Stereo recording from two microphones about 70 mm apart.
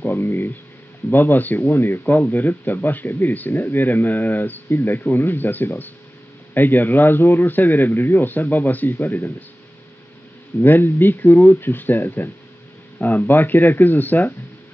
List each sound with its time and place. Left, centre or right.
0.0 s speech: left
10.6 s speech: left